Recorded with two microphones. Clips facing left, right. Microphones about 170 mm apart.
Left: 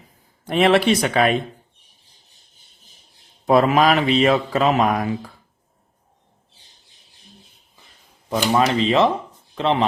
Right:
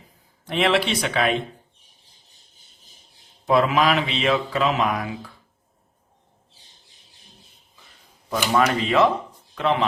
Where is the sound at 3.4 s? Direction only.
45° left (ahead or behind).